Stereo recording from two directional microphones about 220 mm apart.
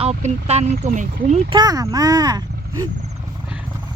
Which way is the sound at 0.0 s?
30° right (ahead or behind).